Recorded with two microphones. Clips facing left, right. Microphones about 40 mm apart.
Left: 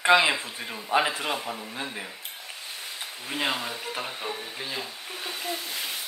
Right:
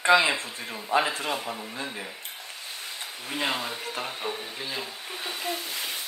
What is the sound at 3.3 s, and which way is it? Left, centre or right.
Speech, centre.